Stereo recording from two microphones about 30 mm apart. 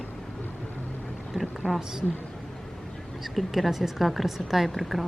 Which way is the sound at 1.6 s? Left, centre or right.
Right.